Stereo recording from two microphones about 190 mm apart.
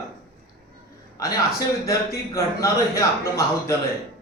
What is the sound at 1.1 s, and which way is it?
A man's voice, 15° left (ahead or behind).